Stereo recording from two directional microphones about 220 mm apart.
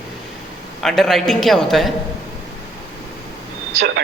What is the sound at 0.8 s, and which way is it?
A man's voice, centre (ahead or behind).